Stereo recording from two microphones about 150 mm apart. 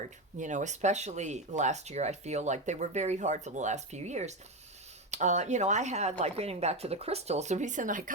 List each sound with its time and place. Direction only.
0.3 s speech: 55° right (ahead or behind)